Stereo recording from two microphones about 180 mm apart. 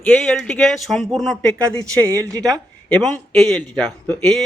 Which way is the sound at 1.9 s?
15° right (ahead or behind).